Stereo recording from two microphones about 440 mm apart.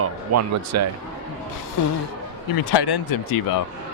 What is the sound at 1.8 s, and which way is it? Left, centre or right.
Speech, left.